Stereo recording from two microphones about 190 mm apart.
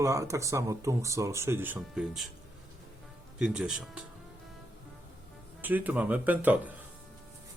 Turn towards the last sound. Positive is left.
turn(degrees=-10)  # may be behind; listen again after turning